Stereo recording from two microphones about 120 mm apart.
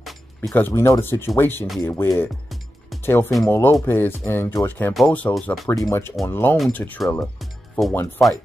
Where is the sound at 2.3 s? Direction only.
Centre (ahead or behind).